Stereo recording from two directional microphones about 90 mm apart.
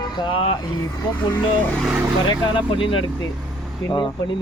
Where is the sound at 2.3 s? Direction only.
70° left (ahead or behind).